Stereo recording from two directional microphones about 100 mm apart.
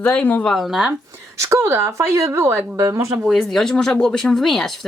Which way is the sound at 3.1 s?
Centre (ahead or behind).